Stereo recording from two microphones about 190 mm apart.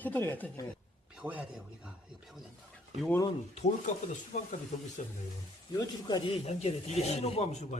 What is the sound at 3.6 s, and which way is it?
Speech, 40° left (ahead or behind).